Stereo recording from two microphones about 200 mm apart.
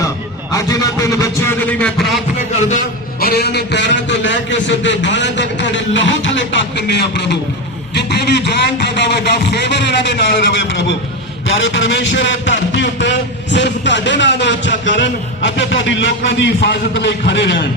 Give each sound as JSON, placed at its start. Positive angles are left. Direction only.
{"t": 0.5, "sound": "a man's voice", "side_deg": 15}
{"t": 1.8, "sound": "a sound", "side_deg": 0}
{"t": 3.2, "sound": "a man's voice", "side_deg": 50}